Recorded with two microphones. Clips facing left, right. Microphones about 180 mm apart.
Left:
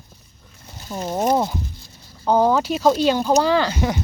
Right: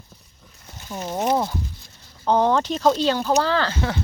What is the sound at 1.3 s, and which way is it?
Speech, 15° left (ahead or behind).